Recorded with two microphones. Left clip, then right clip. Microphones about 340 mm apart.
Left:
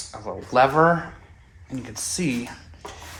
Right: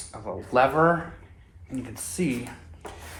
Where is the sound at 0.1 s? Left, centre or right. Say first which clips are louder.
Left 2 dB; left.